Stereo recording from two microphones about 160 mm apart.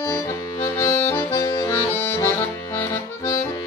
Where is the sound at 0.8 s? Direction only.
20° left (ahead or behind).